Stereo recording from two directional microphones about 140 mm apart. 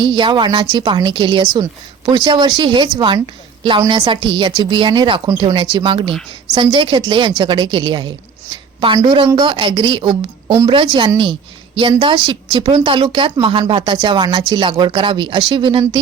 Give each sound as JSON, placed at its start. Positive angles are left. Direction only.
{"t": 0.0, "sound": "a woman's voice", "side_deg": -35}